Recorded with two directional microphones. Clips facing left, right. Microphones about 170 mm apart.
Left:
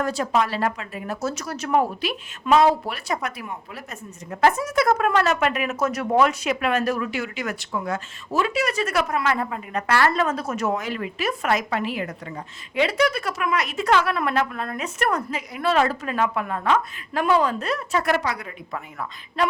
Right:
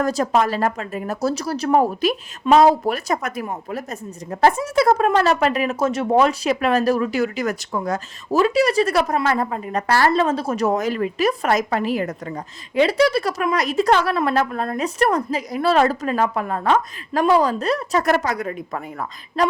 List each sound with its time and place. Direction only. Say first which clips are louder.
0.0 s speech: right 4 dB; 40° right (ahead or behind)
4.3 s speech: right 3 dB; 30° right (ahead or behind)